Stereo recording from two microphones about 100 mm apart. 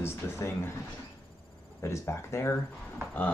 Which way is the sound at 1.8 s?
30° left (ahead or behind).